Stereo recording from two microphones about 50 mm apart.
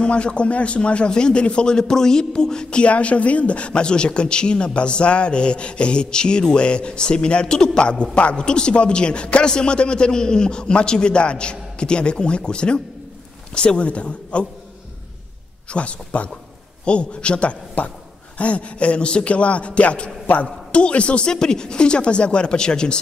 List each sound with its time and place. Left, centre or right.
0.0 s a man's voice: left
15.7 s a man's voice: left